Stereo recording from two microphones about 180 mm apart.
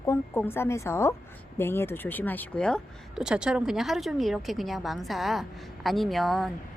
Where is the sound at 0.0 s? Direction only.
15° left (ahead or behind).